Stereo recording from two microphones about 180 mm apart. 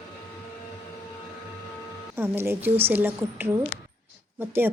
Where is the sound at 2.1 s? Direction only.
15° right (ahead or behind).